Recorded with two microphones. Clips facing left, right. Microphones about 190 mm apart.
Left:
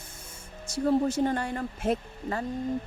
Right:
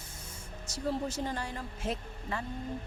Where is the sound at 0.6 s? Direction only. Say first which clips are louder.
Left 9 dB; 55° left (ahead or behind).